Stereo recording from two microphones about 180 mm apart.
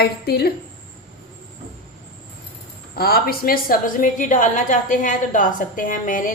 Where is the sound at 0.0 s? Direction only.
60° left (ahead or behind).